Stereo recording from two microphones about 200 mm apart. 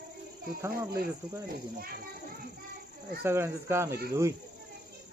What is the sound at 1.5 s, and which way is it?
Speech, 50° right (ahead or behind).